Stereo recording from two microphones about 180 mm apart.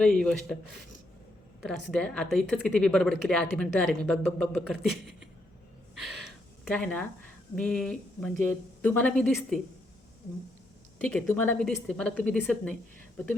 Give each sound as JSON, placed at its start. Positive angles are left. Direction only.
{"t": 0.0, "sound": "speech", "side_deg": 5}
{"t": 1.6, "sound": "speech", "side_deg": 5}
{"t": 5.9, "sound": "gasp", "side_deg": 0}
{"t": 7.5, "sound": "speech", "side_deg": 5}
{"t": 10.9, "sound": "speech", "side_deg": 5}